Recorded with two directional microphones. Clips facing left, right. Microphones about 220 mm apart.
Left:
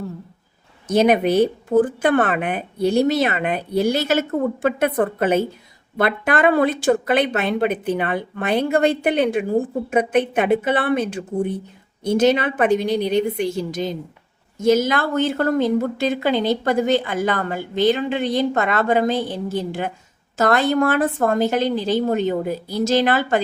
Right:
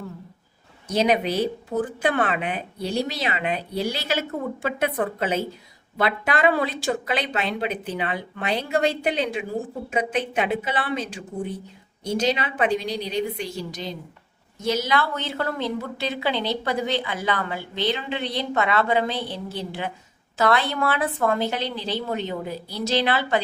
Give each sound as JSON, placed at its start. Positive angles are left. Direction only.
{"t": 0.9, "sound": "a woman's voice", "side_deg": 55}